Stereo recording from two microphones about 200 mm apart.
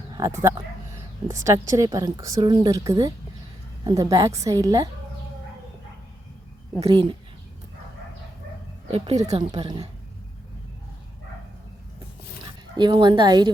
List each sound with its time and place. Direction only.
0.1 s a woman's voice: 15° right (ahead or behind)
6.8 s a woman's voice: 25° right (ahead or behind)
8.9 s speech: 30° right (ahead or behind)
9.4 s a woman's voice: 20° right (ahead or behind)
12.7 s a woman's voice: 25° right (ahead or behind)